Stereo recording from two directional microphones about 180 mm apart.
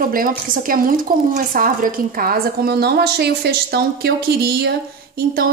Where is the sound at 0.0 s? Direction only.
50° right (ahead or behind).